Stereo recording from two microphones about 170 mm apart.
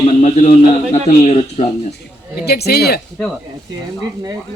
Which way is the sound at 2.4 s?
70° left (ahead or behind).